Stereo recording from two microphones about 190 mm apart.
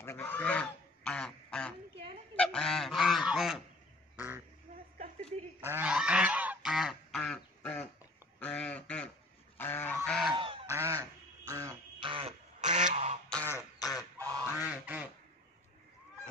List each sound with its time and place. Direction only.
0.0 s goose: 10° left (ahead or behind)
5.6 s goose: 10° right (ahead or behind); by 7.8 s 5° left (ahead or behind)
8.4 s a sound: 5° left (ahead or behind)
9.6 s goose: 10° left (ahead or behind)
10.3 s goose: 25° right (ahead or behind)
10.7 s duck: 15° right (ahead or behind)
12.0 s duck: 30° right (ahead or behind)
13.3 s throat clearing: 10° left (ahead or behind)
14.1 s quack: 15° right (ahead or behind)